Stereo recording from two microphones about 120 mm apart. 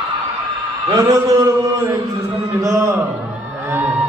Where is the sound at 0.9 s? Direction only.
25° right (ahead or behind).